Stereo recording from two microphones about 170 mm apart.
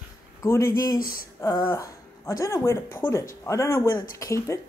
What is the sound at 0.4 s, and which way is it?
Speech, 15° left (ahead or behind).